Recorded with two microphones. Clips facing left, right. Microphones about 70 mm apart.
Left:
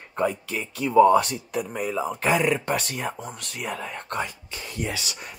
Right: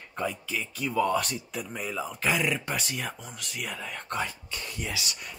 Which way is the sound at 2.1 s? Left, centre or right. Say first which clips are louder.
Left 5 dB; left.